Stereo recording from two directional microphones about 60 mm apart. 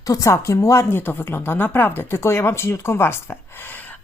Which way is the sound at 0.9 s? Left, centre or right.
Left.